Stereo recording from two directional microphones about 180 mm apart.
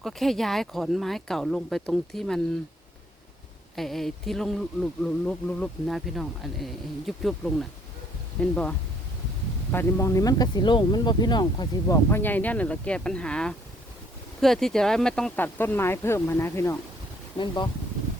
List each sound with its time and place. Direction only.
0.0 s speech: centre (ahead or behind)
3.8 s speech: centre (ahead or behind)
9.7 s speech: 15° left (ahead or behind)
17.3 s speech: 25° left (ahead or behind)